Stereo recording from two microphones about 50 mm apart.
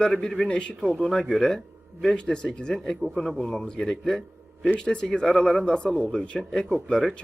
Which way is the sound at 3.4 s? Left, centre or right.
Centre.